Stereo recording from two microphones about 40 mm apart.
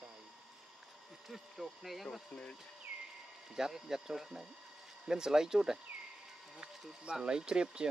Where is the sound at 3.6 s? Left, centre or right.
Centre.